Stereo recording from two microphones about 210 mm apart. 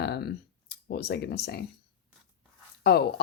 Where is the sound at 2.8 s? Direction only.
50° left (ahead or behind).